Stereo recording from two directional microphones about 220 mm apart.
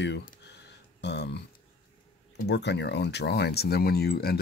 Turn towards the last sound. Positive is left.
turn(degrees=45)  # may be behind; listen again after turning